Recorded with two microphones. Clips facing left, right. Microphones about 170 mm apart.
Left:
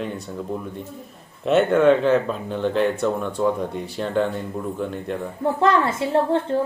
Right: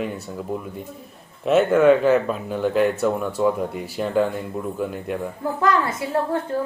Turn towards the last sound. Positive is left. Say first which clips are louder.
# left 3 dB
turn(degrees=25)  # may be behind; listen again after turning